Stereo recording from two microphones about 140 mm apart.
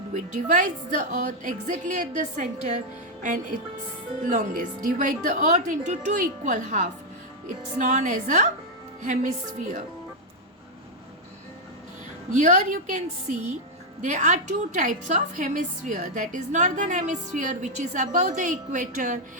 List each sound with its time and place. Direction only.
0.1 s a woman's voice: 65° right (ahead or behind)
4.3 s a woman's voice: 75° right (ahead or behind)
12.4 s a woman's voice: 60° right (ahead or behind)